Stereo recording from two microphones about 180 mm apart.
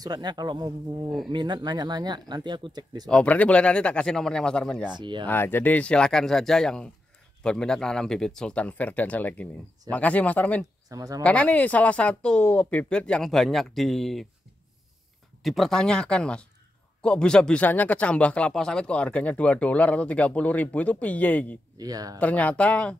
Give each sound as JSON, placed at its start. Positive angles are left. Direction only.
{"t": 0.0, "sound": "speech", "side_deg": -20}
{"t": 3.1, "sound": "speech", "side_deg": 5}
{"t": 4.9, "sound": "speech", "side_deg": -25}
{"t": 5.2, "sound": "speech", "side_deg": 10}
{"t": 10.9, "sound": "speech", "side_deg": -20}
{"t": 11.2, "sound": "speech", "side_deg": 5}
{"t": 15.4, "sound": "speech", "side_deg": 0}
{"t": 21.7, "sound": "speech", "side_deg": -20}
{"t": 22.2, "sound": "speech", "side_deg": 10}